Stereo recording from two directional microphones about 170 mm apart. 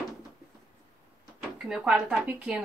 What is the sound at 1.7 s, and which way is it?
Speech, centre (ahead or behind).